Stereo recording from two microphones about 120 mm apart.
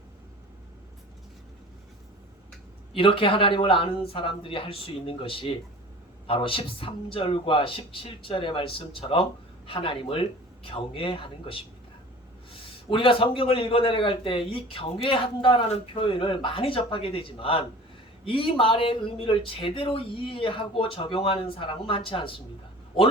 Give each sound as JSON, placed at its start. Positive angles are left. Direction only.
{"t": 2.9, "sound": "a man's voice", "side_deg": 50}